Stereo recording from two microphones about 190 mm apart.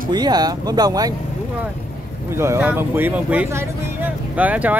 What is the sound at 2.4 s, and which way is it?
Speech, 10° right (ahead or behind).